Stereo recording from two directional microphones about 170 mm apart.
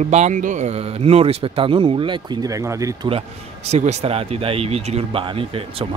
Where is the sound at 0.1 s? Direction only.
45° right (ahead or behind); by 3.1 s 20° right (ahead or behind).